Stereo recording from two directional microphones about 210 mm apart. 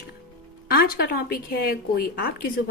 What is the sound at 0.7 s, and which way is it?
Speech, 45° left (ahead or behind).